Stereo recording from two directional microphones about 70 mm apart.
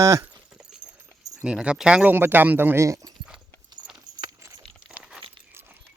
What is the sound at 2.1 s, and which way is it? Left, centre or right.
Speech, right.